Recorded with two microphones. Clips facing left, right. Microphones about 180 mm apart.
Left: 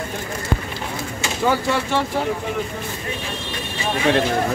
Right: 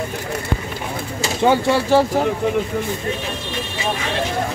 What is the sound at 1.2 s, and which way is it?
Speech, 30° right (ahead or behind).